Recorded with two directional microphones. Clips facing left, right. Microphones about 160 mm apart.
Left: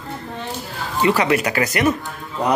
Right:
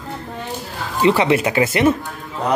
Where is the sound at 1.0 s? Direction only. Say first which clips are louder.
Right 2 dB; 25° right (ahead or behind).